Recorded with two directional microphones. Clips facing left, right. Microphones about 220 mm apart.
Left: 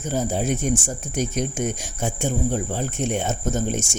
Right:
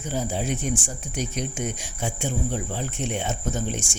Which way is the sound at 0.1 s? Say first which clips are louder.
Left 4 dB; 45° left (ahead or behind).